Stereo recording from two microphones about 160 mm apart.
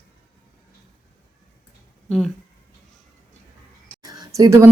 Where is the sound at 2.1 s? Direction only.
Centre (ahead or behind).